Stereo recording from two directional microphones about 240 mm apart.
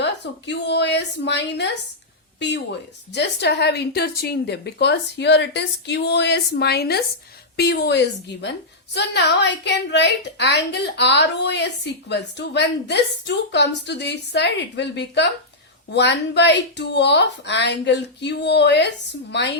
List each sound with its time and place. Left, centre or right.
0.0 s a woman's voice: left
3.1 s a woman's voice: left